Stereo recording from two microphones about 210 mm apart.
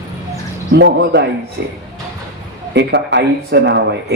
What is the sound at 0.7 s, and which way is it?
Speech, 55° right (ahead or behind).